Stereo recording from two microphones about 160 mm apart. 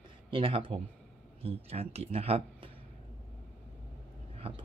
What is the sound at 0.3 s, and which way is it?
Speech, 30° right (ahead or behind).